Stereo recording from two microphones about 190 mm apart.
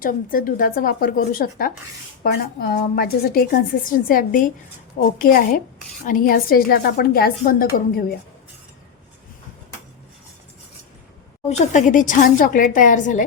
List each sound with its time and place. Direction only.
0.0 s a woman's voice: 45° left (ahead or behind)
11.4 s a woman's voice: 35° left (ahead or behind)